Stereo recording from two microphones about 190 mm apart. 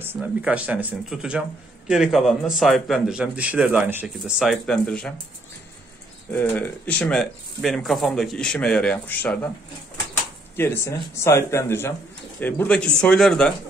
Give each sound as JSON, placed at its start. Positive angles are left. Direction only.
{"t": 0.0, "sound": "a man's voice", "side_deg": -10}
{"t": 6.3, "sound": "a man's voice", "side_deg": 10}
{"t": 10.5, "sound": "a man's voice", "side_deg": 10}